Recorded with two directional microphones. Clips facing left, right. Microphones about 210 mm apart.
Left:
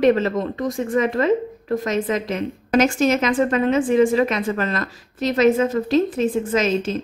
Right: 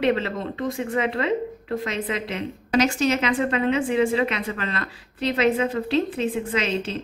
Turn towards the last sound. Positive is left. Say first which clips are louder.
# left 5 dB
turn(degrees=45)  # may be behind; listen again after turning